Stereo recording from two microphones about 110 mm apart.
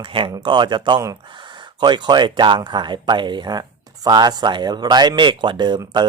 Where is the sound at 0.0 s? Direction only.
50° right (ahead or behind).